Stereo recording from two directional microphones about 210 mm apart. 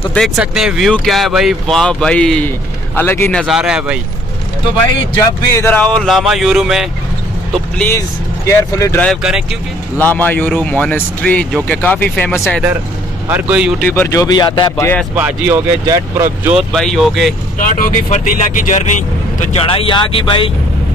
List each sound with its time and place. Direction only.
0.1 s speech: centre (ahead or behind)
5.2 s speech: 10° left (ahead or behind)
5.9 s speech: centre (ahead or behind)
13.3 s speech: 5° right (ahead or behind)
13.7 s speech: 10° left (ahead or behind)
15.1 s speech: 10° right (ahead or behind)
16.7 s speech: centre (ahead or behind)
17.6 s speech: 40° left (ahead or behind)